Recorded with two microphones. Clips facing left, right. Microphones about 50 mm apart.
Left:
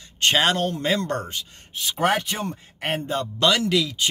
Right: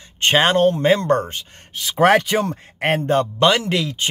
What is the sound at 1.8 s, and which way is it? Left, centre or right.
Speech, right.